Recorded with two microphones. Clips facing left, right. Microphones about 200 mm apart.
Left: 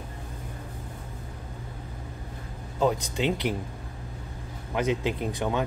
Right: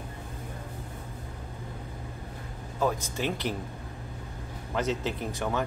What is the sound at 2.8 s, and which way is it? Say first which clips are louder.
Speech: left 3 dB; 15° left (ahead or behind).